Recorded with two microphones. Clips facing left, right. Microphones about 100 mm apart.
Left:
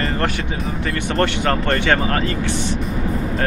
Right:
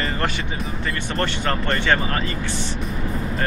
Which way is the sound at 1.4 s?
55° left (ahead or behind).